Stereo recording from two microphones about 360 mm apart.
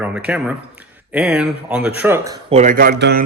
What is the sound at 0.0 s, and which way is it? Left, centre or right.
Speech, centre.